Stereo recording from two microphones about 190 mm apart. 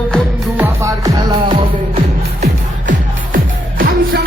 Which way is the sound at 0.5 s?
15° right (ahead or behind).